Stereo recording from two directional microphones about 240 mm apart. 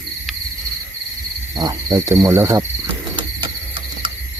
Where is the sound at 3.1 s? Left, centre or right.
Right.